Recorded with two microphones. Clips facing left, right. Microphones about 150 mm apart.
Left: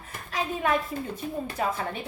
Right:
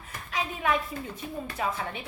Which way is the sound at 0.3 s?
40° left (ahead or behind).